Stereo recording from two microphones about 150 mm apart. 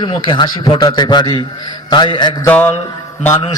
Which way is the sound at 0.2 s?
30° left (ahead or behind).